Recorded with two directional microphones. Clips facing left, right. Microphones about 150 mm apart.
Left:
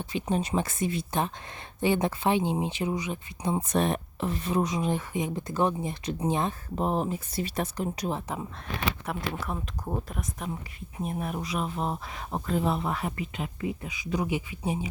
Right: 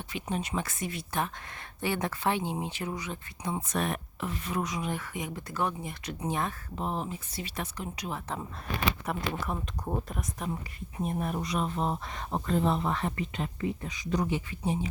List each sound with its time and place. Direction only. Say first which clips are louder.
0.0 s speech: left 5 dB; 35° left (ahead or behind)
6.7 s speech: left 6 dB; 45° left (ahead or behind)
8.3 s speech: left 1 dB; 10° left (ahead or behind)